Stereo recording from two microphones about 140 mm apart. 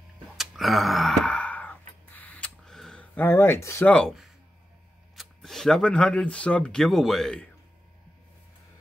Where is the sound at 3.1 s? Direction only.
15° left (ahead or behind).